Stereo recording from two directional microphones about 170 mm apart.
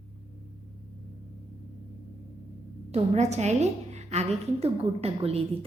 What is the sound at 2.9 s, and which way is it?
A woman's voice, 40° right (ahead or behind).